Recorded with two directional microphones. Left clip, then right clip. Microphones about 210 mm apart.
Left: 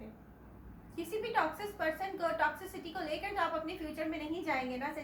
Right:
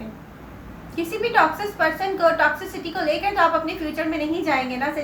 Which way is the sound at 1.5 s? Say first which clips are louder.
Right 14 dB; 15° right (ahead or behind).